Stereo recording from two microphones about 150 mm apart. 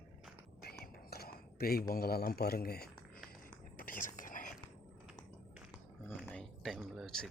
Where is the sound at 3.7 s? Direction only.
65° left (ahead or behind).